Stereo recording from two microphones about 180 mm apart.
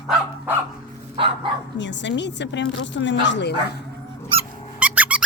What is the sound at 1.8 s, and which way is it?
Speech, 80° left.